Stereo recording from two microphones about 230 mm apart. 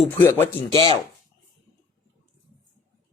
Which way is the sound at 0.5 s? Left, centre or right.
Centre.